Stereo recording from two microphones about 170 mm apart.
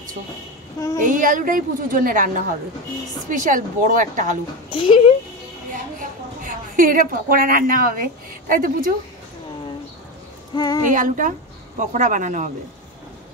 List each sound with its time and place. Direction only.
0.9 s a woman's voice: 50° right (ahead or behind)
4.6 s speech: 30° left (ahead or behind)
5.7 s a woman's voice: 50° right (ahead or behind)
10.5 s a sound: 20° left (ahead or behind)
10.9 s speech: 50° right (ahead or behind)